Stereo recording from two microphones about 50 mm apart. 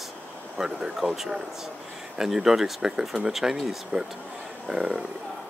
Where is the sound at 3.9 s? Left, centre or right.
Right.